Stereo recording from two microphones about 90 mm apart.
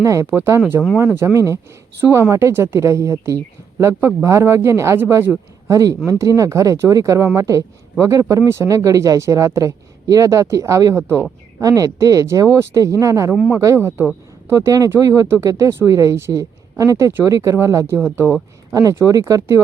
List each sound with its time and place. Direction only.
0.0 s speech: 35° right (ahead or behind); by 2.3 s 20° right (ahead or behind)
2.3 s speech: 30° right (ahead or behind)
5.6 s speech: 35° right (ahead or behind)
11.6 s speech: 40° right (ahead or behind)
13.7 s speech: 25° right (ahead or behind)
14.5 s speech: 40° right (ahead or behind); by 18.3 s 25° right (ahead or behind)
18.7 s speech: 40° right (ahead or behind)